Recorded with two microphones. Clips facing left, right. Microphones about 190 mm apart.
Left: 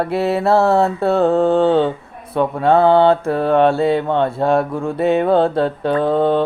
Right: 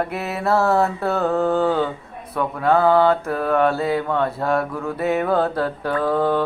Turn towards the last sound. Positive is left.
turn(degrees=25)  # may be behind; listen again after turning